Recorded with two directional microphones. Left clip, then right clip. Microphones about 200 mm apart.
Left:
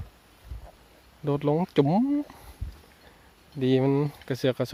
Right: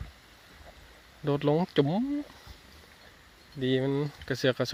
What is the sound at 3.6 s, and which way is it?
Speech, 15° left (ahead or behind).